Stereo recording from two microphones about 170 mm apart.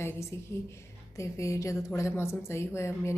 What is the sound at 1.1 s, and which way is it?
A woman's voice, 20° left (ahead or behind).